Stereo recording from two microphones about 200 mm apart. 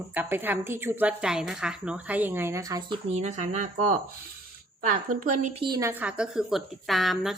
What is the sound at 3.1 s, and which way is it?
Speech, 35° right (ahead or behind).